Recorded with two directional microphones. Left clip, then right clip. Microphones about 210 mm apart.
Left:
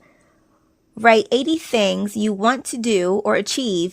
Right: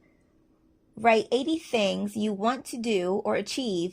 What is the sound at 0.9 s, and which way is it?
A woman's voice, 40° left (ahead or behind).